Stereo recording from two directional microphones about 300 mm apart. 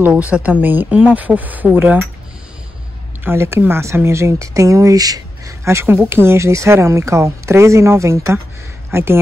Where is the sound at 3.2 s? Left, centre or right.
Centre.